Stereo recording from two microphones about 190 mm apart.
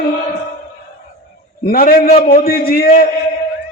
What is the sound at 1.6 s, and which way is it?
A man's voice, 50° left (ahead or behind).